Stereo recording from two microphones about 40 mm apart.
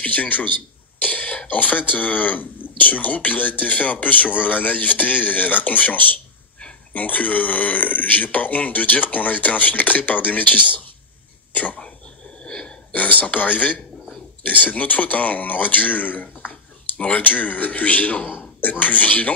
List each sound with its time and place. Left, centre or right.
0.0 s a man's voice: left
1.0 s cough: left
1.5 s a man's voice: left
12.4 s wheeze: left
12.9 s a man's voice: left